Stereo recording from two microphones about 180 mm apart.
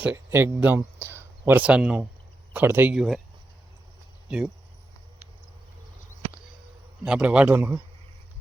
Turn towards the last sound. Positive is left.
turn(degrees=-10)  # may be behind; listen again after turning